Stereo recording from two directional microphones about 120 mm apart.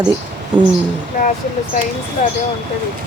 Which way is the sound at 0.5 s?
40° right (ahead or behind).